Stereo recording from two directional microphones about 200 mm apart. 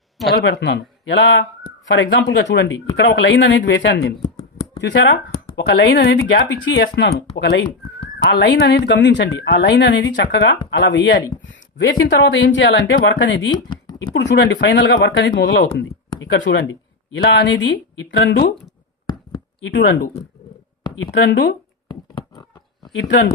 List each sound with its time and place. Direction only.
0.2 s speech: centre (ahead or behind)
0.6 s a woman's voice: 65° left (ahead or behind)
11.4 s a sound: 65° left (ahead or behind)
12.1 s a woman's voice: 65° left (ahead or behind)
19.6 s a woman's voice: 65° left (ahead or behind)
21.8 s a sound: 20° left (ahead or behind)
22.9 s speech: 75° left (ahead or behind)